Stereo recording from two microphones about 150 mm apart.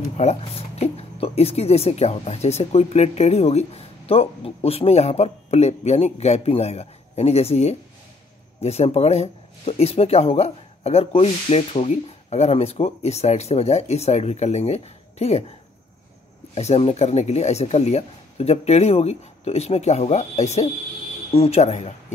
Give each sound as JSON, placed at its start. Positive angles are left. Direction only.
{"t": 0.2, "sound": "speech", "side_deg": 45}
{"t": 16.5, "sound": "speech", "side_deg": 45}